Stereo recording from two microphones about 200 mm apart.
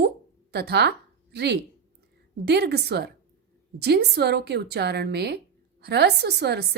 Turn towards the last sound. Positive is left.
turn(degrees=-55)  # may be behind; listen again after turning